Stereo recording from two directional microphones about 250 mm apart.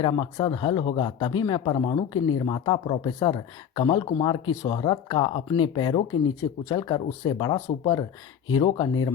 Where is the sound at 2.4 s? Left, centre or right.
Centre.